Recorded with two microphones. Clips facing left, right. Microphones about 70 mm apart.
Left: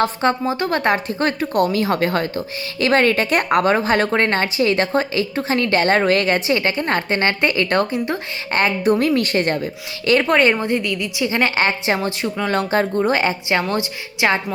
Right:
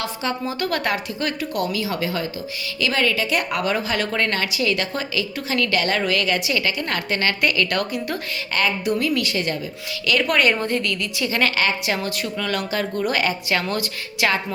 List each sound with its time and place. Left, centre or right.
0.0 s a woman's voice: left
0.6 s a woman's voice: left
10.1 s a woman's voice: left